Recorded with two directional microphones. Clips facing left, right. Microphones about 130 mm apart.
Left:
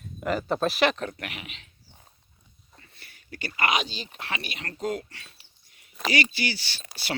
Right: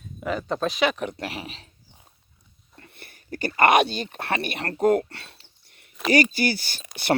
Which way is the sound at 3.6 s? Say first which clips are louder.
Right 9 dB; 55° right (ahead or behind).